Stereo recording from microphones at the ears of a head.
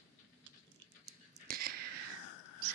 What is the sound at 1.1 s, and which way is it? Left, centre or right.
Whispering, right.